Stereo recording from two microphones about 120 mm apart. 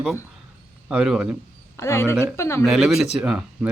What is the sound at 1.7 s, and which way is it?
Speech, 25° left (ahead or behind).